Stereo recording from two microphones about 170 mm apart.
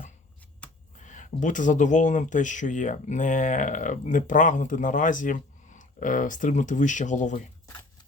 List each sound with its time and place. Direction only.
0.9 s speech: 45° left (ahead or behind)